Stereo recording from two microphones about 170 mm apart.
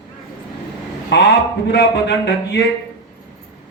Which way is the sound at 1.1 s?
90° left.